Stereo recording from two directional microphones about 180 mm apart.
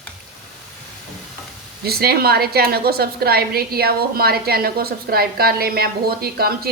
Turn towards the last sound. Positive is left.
turn(degrees=-60)  # may be behind; listen again after turning